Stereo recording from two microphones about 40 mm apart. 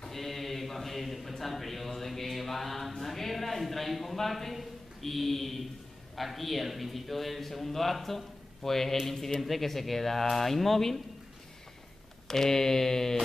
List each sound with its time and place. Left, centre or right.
0.0 s a sound: centre
1.4 s mantra: centre
12.3 s mantra: centre